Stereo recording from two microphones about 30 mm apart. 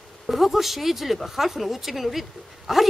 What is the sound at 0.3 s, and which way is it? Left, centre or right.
A woman's voice, centre.